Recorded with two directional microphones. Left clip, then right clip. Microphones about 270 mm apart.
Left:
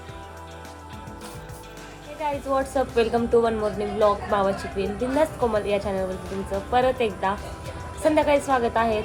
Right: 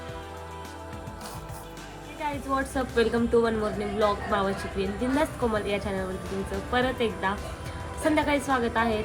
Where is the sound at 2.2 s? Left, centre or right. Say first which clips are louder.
Left 4 dB; centre.